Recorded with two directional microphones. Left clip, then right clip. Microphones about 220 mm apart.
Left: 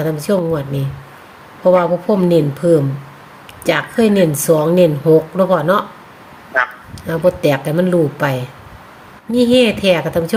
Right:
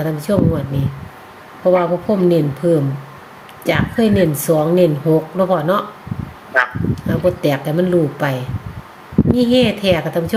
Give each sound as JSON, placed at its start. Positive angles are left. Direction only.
{"t": 0.0, "sound": "speech", "side_deg": 20}
{"t": 6.5, "sound": "a sound", "side_deg": -5}
{"t": 6.9, "sound": "speech", "side_deg": 20}